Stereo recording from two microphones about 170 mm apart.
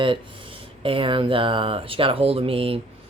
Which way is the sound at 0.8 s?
30° right (ahead or behind).